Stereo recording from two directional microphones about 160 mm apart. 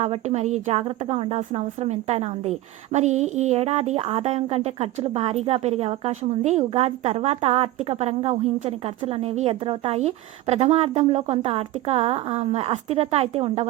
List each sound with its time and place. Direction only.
0.0 s a woman's voice: 40° right (ahead or behind)